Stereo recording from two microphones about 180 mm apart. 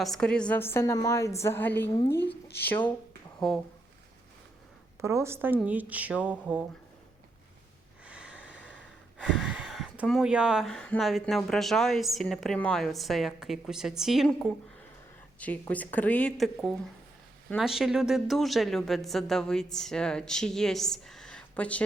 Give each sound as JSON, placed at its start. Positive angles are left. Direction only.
{"t": 0.0, "sound": "a woman's voice", "side_deg": 5}
{"t": 4.9, "sound": "a woman's voice", "side_deg": -15}
{"t": 8.0, "sound": "snort", "side_deg": -5}
{"t": 8.4, "sound": "a sound", "side_deg": -90}
{"t": 9.1, "sound": "speech", "side_deg": 0}
{"t": 15.4, "sound": "a woman's voice", "side_deg": 10}